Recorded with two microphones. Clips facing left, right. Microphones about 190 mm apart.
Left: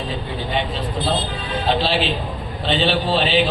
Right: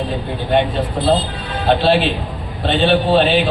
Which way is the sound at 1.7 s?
55° right (ahead or behind).